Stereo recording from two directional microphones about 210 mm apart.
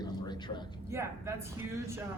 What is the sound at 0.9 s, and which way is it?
Speech, 10° right (ahead or behind).